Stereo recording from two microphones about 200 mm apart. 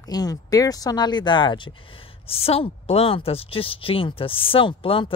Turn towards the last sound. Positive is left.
turn(degrees=25)  # may be behind; listen again after turning